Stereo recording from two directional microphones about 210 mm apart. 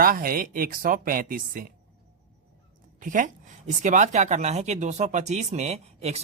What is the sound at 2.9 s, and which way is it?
Speech, 40° right (ahead or behind).